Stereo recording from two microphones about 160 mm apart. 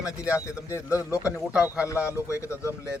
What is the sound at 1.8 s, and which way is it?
Speech, 20° left (ahead or behind).